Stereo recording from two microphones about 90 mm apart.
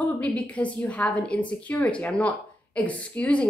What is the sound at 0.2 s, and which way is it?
A woman's voice, 15° left (ahead or behind).